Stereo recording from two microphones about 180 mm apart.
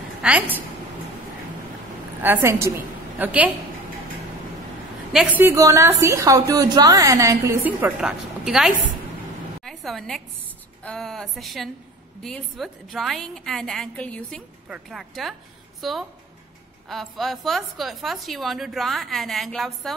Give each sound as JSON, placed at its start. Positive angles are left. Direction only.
{"t": 0.2, "sound": "a woman's voice", "side_deg": -10}
{"t": 2.2, "sound": "a woman's voice", "side_deg": -15}
{"t": 5.1, "sound": "a woman's voice", "side_deg": 0}
{"t": 5.4, "sound": "a woman's voice", "side_deg": -15}
{"t": 9.6, "sound": "a sound", "side_deg": 0}
{"t": 10.8, "sound": "a woman's voice", "side_deg": 5}